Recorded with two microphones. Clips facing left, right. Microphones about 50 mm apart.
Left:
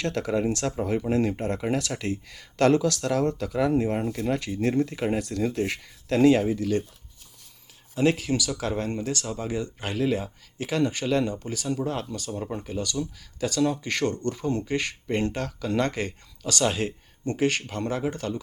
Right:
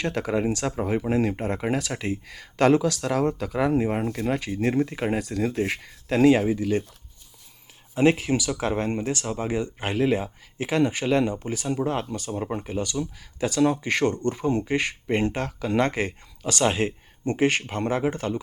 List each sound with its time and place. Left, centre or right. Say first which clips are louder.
0.0 s speech: right 1 dB; centre
7.9 s speech: right 3 dB; right